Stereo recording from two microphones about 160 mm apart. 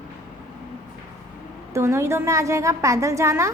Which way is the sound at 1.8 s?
15° right (ahead or behind).